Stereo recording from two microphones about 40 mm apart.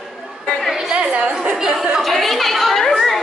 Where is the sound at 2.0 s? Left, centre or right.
Centre.